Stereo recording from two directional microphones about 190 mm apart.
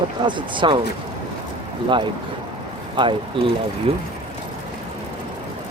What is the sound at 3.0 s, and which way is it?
Speech, 25° right (ahead or behind).